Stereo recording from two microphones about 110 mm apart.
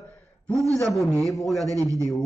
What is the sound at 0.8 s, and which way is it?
Speech, centre (ahead or behind).